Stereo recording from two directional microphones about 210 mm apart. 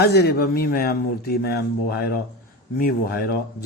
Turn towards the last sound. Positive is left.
turn(degrees=45)  # may be behind; listen again after turning